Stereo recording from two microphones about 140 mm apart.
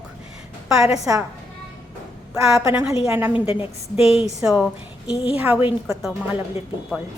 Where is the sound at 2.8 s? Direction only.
10° right (ahead or behind).